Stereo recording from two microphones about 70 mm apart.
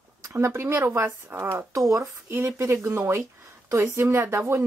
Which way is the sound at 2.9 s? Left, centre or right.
Right.